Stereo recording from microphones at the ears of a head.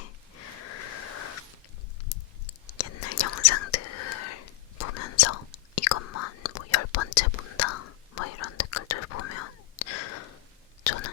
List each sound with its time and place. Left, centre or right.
0.0 s sniff: left
2.0 s whispering: left